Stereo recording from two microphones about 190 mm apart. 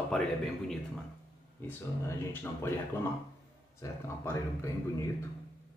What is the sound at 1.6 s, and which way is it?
Speech, 15° left (ahead or behind).